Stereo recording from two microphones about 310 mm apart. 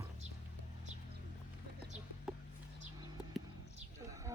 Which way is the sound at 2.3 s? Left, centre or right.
Centre.